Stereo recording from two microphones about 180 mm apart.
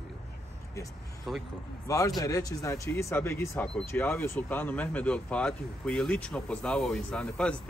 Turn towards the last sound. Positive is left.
turn(degrees=5)  # may be behind; listen again after turning